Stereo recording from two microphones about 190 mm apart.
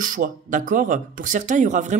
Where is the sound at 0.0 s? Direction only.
45° right (ahead or behind).